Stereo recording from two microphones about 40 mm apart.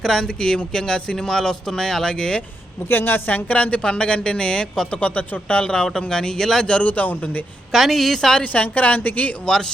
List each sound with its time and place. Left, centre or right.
0.0 s speech: centre
2.9 s speech: left
3.8 s a woman's voice: left
4.9 s a woman's voice: left
5.6 s speech: centre
6.8 s a woman's voice: left
7.7 s a woman's voice: centre
8.4 s a woman's voice: left